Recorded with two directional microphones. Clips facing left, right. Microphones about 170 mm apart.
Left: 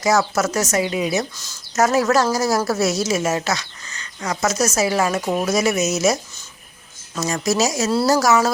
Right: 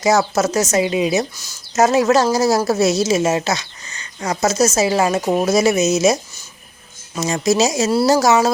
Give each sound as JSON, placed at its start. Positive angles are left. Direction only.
{"t": 0.0, "sound": "a woman's voice", "side_deg": -25}
{"t": 7.2, "sound": "a woman's voice", "side_deg": -20}